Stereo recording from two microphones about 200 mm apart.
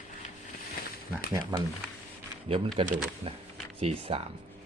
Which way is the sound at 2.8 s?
25° right (ahead or behind).